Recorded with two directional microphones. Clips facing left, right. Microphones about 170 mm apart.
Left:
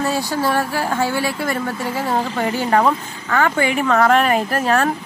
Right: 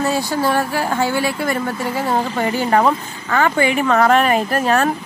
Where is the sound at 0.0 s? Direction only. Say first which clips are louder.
Right 1 dB; 15° right (ahead or behind).